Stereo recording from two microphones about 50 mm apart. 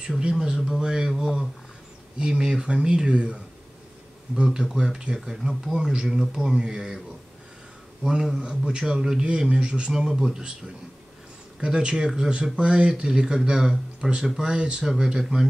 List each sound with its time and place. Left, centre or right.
0.2 s speech: centre
4.6 s speech: centre
8.0 s speech: centre
11.6 s speech: centre